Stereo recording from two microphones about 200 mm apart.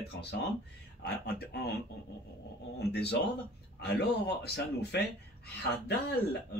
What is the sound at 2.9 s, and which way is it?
Speech, 55° left (ahead or behind).